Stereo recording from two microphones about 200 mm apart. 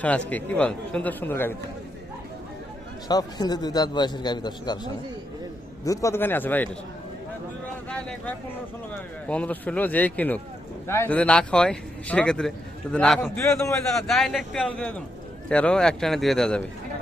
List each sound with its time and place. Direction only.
0.0 s speech: 5° left (ahead or behind)
3.1 s a man's voice: 20° left (ahead or behind)
9.2 s speech: 5° left (ahead or behind)